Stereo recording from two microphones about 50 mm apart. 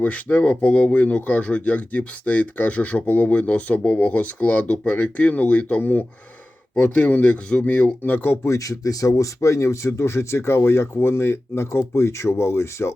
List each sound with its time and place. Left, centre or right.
0.0 s speech: left
8.4 s speech: left